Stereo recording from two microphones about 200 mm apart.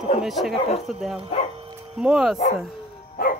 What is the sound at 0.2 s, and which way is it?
Speech, centre (ahead or behind).